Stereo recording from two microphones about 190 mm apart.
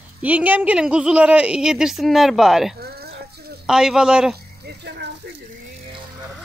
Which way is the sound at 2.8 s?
55° right (ahead or behind).